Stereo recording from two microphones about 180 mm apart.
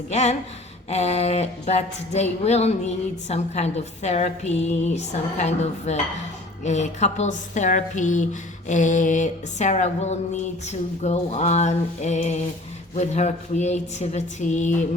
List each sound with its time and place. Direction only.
0.1 s a woman's voice: 40° left (ahead or behind)